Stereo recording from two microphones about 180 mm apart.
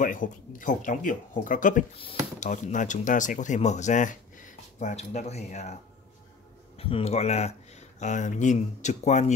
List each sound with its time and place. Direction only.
0.0 s speech: 45° left (ahead or behind)
6.8 s speech: 30° left (ahead or behind)